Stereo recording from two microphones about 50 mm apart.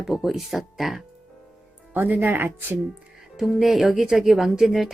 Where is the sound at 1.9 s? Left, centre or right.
Right.